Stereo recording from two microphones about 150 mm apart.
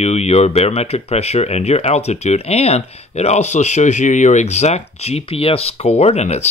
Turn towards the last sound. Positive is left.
turn(degrees=45)  # may be behind; listen again after turning